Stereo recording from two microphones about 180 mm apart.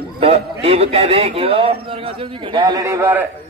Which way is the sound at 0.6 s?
35° right (ahead or behind).